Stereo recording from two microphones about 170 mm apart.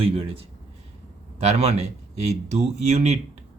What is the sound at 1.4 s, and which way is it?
Speech, 40° right (ahead or behind).